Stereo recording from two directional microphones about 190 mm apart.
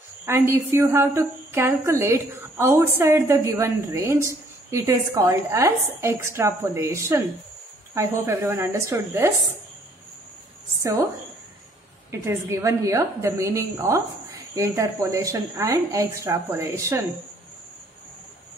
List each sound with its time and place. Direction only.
0.2 s a woman's voice: 15° right (ahead or behind)
10.8 s a woman's voice: 15° right (ahead or behind)
12.1 s a woman's voice: 15° right (ahead or behind)